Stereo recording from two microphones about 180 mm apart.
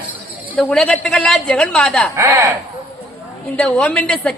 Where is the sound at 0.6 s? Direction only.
Centre (ahead or behind).